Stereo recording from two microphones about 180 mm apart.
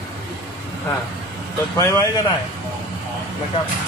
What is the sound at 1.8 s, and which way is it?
Speech, 15° left (ahead or behind).